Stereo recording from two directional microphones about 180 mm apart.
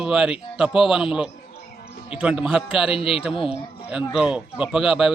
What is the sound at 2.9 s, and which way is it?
Speech, 30° left (ahead or behind).